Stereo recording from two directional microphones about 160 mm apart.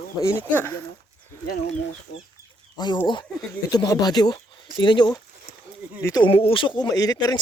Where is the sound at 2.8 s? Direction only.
25° left (ahead or behind).